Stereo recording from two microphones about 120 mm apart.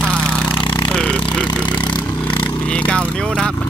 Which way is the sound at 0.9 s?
10° left (ahead or behind).